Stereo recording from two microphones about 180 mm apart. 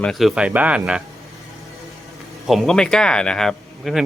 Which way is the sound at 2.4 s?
Centre (ahead or behind).